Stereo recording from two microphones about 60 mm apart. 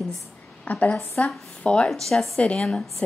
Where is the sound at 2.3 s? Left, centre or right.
Centre.